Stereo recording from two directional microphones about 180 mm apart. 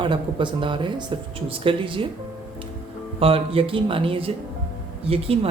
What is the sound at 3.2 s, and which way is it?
Speech, 30° right (ahead or behind).